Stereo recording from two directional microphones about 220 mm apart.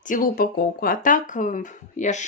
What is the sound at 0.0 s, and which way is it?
A woman's voice, 40° left (ahead or behind).